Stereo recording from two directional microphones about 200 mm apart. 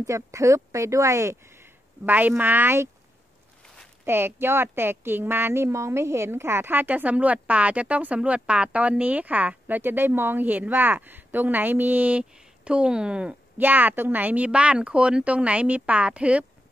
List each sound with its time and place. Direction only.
0.0 s speech: 15° right (ahead or behind)
4.0 s speech: 10° right (ahead or behind)